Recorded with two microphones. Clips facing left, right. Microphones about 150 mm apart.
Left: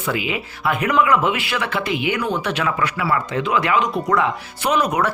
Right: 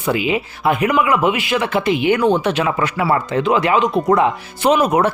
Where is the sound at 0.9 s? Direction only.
15° right (ahead or behind).